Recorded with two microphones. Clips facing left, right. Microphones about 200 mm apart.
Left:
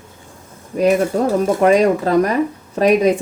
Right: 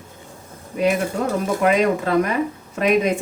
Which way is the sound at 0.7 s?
40° left (ahead or behind).